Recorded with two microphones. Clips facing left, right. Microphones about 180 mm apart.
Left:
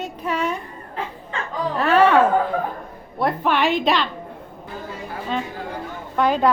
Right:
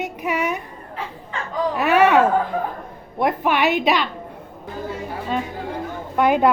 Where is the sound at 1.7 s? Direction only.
15° right (ahead or behind).